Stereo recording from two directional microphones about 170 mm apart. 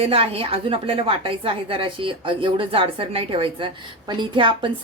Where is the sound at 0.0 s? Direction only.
35° right (ahead or behind).